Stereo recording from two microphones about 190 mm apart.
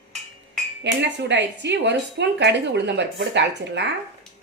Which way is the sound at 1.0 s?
65° right (ahead or behind).